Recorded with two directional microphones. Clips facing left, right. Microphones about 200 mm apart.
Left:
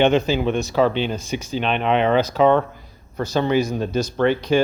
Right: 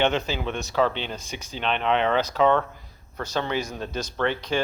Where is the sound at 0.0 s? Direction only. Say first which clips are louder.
Left 7 dB; 15° left (ahead or behind).